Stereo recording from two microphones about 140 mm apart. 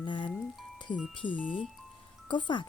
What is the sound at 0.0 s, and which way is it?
Music, 35° left (ahead or behind).